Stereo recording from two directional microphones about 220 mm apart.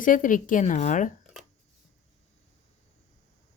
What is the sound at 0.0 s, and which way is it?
Speech, 35° left (ahead or behind).